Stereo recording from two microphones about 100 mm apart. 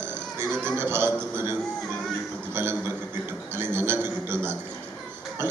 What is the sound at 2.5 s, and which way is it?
Speech, 25° right (ahead or behind).